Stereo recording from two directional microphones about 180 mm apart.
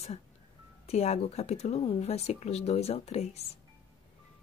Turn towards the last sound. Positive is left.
turn(degrees=35)  # may be behind; listen again after turning